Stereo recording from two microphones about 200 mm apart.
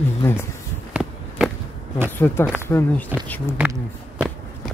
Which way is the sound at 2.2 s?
10° left (ahead or behind).